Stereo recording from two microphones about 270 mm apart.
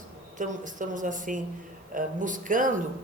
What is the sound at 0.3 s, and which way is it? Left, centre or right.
Speech, right.